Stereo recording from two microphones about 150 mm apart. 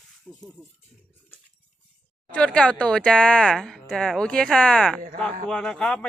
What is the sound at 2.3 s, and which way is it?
Speech, 5° left (ahead or behind).